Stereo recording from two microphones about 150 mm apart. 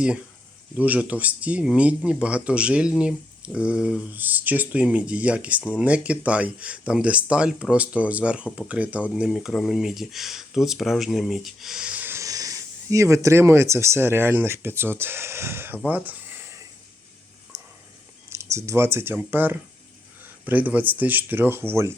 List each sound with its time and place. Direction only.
0.8 s speech: 10° right (ahead or behind)
17.5 s a sound: 20° right (ahead or behind)
18.3 s speech: 20° right (ahead or behind)